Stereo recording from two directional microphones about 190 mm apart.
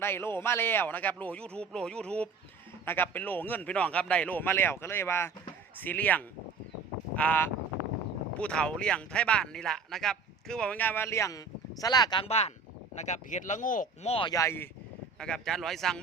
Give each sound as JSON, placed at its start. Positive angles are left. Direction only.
{"t": 0.0, "sound": "speech", "side_deg": 10}
{"t": 15.2, "sound": "speech", "side_deg": 5}